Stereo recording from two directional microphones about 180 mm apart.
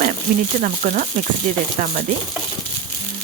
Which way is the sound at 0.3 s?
45° right (ahead or behind).